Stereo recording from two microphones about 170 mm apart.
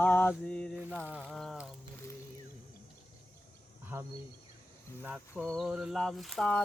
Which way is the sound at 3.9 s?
15° right (ahead or behind).